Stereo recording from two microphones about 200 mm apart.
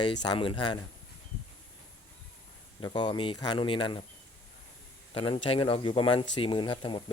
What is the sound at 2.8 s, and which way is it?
Speech, 25° left (ahead or behind).